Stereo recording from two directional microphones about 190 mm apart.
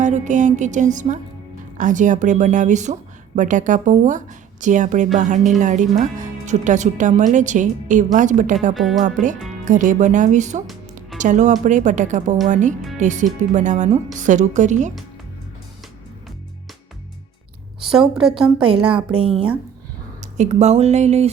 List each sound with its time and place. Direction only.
0.0 s a woman's voice: 40° right (ahead or behind)
8.7 s a woman's voice: centre (ahead or behind)
9.6 s a woman's voice: 40° right (ahead or behind)
17.8 s a woman's voice: 5° right (ahead or behind)
20.3 s a woman's voice: 35° right (ahead or behind)